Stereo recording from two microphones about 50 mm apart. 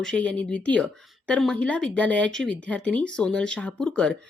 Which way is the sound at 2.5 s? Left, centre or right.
Left.